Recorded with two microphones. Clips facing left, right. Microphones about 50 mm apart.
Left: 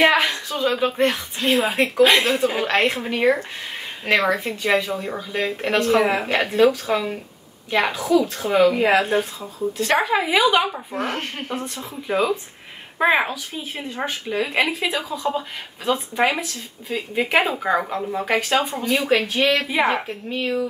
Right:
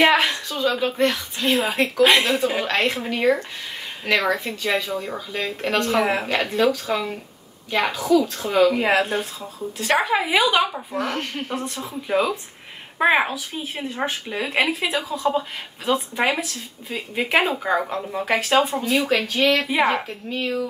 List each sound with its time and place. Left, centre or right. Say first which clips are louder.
0.0 s a sound: even; centre
0.5 s speech: left 1 dB; centre
4.1 s speech: left 2 dB; left; by 6.2 s centre
6.2 s speech: left 3 dB; centre
8.7 s speech: left 2 dB; centre
10.9 s speech: even; left
11.8 s speech: even; centre
18.5 s speech: right 2 dB; centre
18.8 s speech: left 1 dB; centre
19.7 s speech: even; centre